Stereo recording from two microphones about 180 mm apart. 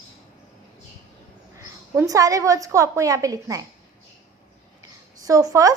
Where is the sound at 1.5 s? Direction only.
20° right (ahead or behind).